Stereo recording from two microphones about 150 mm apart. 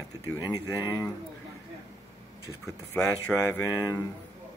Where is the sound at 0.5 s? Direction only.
25° left (ahead or behind).